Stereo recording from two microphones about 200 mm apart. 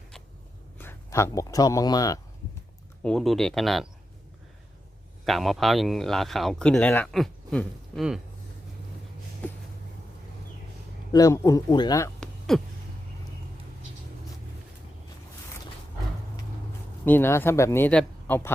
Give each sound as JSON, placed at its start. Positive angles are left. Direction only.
{"t": 0.8, "sound": "speech", "side_deg": 10}
{"t": 3.0, "sound": "speech", "side_deg": 5}
{"t": 5.2, "sound": "speech", "side_deg": 0}
{"t": 9.4, "sound": "a sound", "side_deg": 5}
{"t": 11.1, "sound": "speech", "side_deg": 15}
{"t": 12.2, "sound": "a sound", "side_deg": 0}
{"t": 17.1, "sound": "speech", "side_deg": 10}